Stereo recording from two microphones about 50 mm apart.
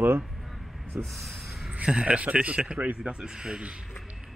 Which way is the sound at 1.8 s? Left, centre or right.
Right.